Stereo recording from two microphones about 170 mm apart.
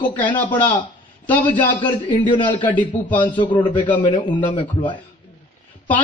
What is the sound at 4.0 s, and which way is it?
Speech, 25° left (ahead or behind).